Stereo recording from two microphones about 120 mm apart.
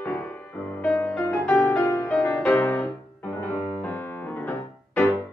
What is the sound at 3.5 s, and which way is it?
Piano, 15° left (ahead or behind).